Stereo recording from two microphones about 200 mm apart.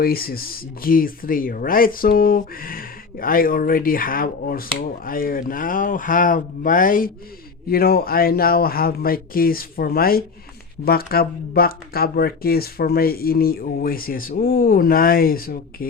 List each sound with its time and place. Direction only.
0.0 s speech: 50° left (ahead or behind)